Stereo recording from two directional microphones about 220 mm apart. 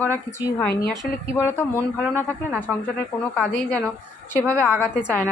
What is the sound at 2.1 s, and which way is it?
Speech, 5° right (ahead or behind).